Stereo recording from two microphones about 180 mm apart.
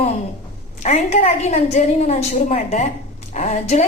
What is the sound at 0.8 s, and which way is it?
A woman's voice, 40° left (ahead or behind).